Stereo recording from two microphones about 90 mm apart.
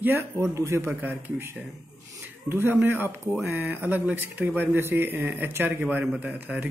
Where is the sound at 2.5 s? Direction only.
25° right (ahead or behind).